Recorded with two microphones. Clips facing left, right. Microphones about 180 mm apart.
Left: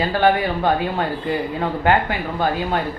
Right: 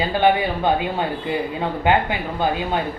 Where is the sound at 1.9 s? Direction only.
20° right (ahead or behind).